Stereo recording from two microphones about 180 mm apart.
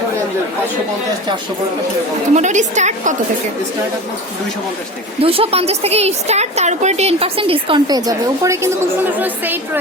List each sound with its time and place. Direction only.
2.3 s a woman's voice: 40° right (ahead or behind)
5.2 s a woman's voice: 30° right (ahead or behind); by 9.6 s 10° right (ahead or behind)